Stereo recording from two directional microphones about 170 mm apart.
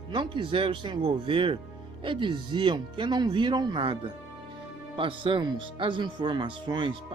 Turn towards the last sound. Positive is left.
turn(degrees=-25)  # may be behind; listen again after turning